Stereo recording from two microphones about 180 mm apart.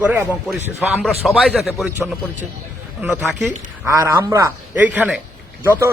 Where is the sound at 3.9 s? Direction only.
15° right (ahead or behind).